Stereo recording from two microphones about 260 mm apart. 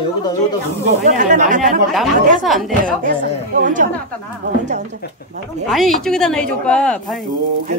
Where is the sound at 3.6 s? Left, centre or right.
Right.